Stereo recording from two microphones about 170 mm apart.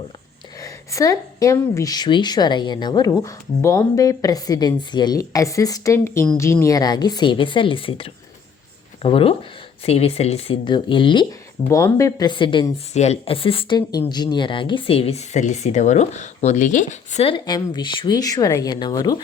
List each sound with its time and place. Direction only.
0.6 s speech: 20° left (ahead or behind)
12.9 s speech: 40° left (ahead or behind)
17.3 s speech: 25° left (ahead or behind)